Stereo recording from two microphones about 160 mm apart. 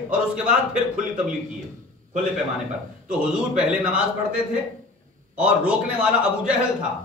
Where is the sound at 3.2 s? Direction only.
5° right (ahead or behind).